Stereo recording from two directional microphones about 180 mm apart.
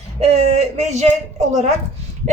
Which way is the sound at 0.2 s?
40° right (ahead or behind).